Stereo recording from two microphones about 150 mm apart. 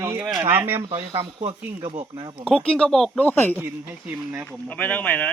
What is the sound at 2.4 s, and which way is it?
Speech, 5° left (ahead or behind).